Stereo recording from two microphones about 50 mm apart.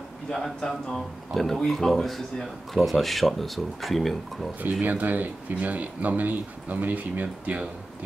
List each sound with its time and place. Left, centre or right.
0.3 s speech: centre
4.8 s speech: right